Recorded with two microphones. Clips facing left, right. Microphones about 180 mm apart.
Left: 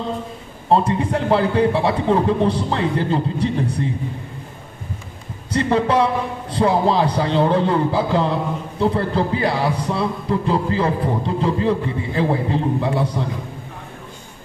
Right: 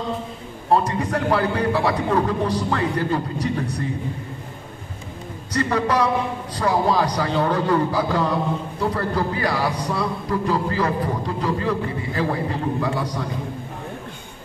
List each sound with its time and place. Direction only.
0.7 s a man's voice: 25° left (ahead or behind)
5.5 s a man's voice: 25° left (ahead or behind)